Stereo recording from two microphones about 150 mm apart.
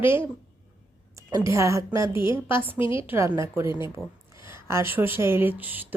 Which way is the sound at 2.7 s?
35° left (ahead or behind).